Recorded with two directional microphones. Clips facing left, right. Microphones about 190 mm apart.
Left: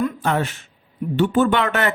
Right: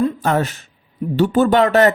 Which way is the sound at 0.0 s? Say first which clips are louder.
Right 4 dB; 35° right (ahead or behind).